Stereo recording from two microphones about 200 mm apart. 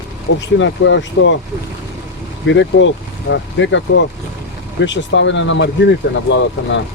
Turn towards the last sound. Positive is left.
turn(degrees=65)  # may be behind; listen again after turning